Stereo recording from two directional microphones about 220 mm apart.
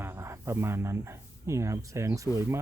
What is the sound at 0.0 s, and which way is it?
Speech, 10° right (ahead or behind).